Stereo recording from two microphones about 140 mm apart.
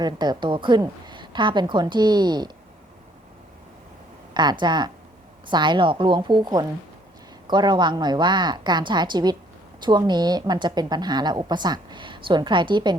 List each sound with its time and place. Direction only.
0.0 s a woman's voice: 30° right (ahead or behind)
4.6 s a woman's voice: 30° right (ahead or behind)